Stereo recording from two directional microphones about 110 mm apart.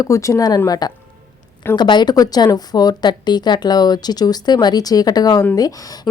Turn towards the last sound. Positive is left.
turn(degrees=35)  # may be behind; listen again after turning